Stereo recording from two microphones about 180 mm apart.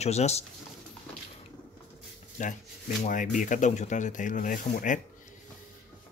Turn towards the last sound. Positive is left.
turn(degrees=45)  # may be behind; listen again after turning